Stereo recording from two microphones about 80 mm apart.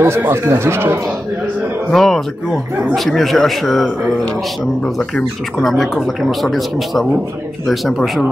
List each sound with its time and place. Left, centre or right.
0.0 s speech: right
1.9 s speech: centre